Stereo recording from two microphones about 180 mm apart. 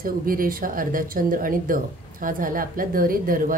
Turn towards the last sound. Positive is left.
turn(degrees=-50)  # may be behind; listen again after turning